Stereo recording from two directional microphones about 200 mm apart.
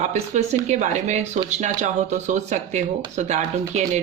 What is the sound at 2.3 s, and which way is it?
A woman's voice, 35° right (ahead or behind).